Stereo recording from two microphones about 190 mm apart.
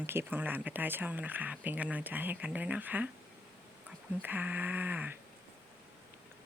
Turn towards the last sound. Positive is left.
turn(degrees=-10)  # may be behind; listen again after turning